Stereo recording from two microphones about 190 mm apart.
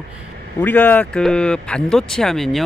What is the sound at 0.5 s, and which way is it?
Speech, 10° left (ahead or behind).